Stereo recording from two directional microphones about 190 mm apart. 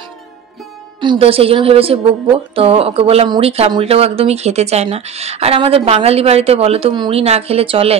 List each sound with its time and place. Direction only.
1.0 s a woman's voice: 30° right (ahead or behind)